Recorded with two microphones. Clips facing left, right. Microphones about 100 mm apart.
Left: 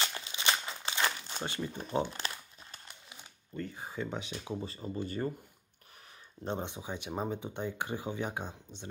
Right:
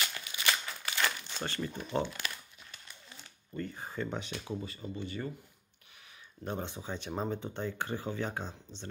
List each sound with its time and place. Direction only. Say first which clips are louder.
0.0 s crumpling: left 1 dB; 30° left (ahead or behind)
2.0 s crumpling: left 1 dB; 35° left (ahead or behind)
3.5 s speech: right 1 dB; 5° left (ahead or behind)
4.5 s speech: left 1 dB; 30° left (ahead or behind)
6.4 s speech: left 1 dB; 20° left (ahead or behind)